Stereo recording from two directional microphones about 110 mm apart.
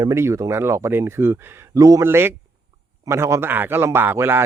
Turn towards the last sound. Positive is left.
turn(degrees=-20)  # may be behind; listen again after turning